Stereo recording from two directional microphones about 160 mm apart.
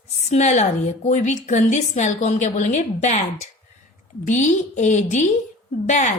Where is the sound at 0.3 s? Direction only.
45° left (ahead or behind).